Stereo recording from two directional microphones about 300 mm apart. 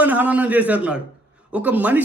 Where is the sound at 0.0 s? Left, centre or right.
Centre.